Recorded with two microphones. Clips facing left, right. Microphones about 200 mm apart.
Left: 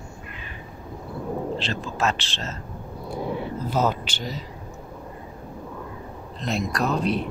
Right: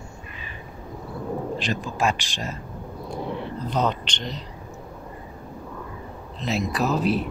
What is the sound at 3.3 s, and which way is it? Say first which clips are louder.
A man's voice: left 2 dB; 5° left (ahead or behind).